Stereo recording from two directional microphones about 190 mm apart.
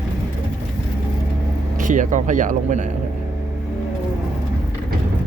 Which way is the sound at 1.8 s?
45° right (ahead or behind).